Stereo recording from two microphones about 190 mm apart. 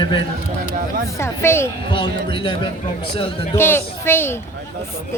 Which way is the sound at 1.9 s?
25° left (ahead or behind).